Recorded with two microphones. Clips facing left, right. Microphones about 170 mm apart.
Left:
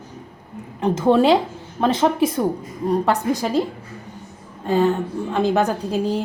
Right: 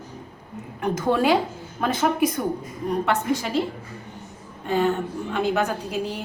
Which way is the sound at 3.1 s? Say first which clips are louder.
Left 3 dB; 40° left (ahead or behind).